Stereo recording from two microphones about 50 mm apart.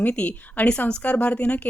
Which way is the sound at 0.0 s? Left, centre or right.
Left.